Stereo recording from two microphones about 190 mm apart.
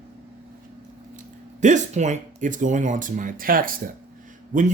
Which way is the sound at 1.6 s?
40° right (ahead or behind).